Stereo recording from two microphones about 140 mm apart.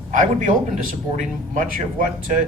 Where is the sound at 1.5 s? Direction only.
75° right (ahead or behind).